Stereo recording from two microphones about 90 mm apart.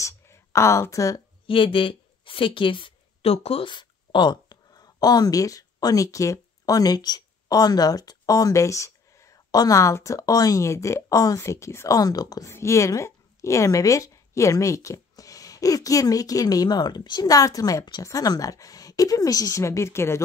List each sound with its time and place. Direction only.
0.0 s speech: 35° left (ahead or behind)
1.5 s a woman's voice: 75° left (ahead or behind); by 12.0 s 30° left (ahead or behind)
12.0 s speech: 45° left (ahead or behind)
12.4 s a woman's voice: 30° left (ahead or behind)